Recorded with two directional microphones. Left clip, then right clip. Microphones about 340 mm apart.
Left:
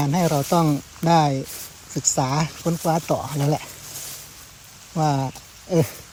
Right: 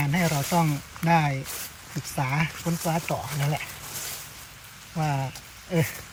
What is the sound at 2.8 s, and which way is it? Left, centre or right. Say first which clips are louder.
Speech: left 6 dB; left.